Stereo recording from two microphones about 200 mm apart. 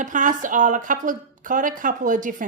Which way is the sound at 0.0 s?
40° right (ahead or behind).